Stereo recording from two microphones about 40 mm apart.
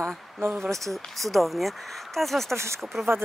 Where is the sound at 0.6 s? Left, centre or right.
Centre.